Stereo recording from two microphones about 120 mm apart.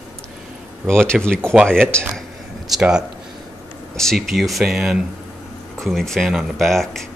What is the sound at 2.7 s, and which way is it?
Speech, 5° right (ahead or behind).